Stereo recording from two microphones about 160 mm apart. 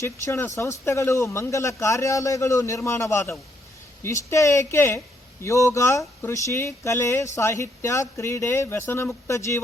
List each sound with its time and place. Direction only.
0.0 s speech: 15° left (ahead or behind)